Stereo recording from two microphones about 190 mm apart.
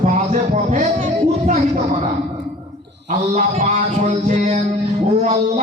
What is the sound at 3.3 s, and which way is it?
Speech, 40° right (ahead or behind).